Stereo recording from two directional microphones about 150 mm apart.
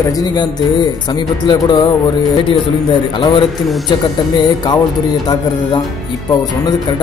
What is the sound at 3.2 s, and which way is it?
Speech, 30° left (ahead or behind).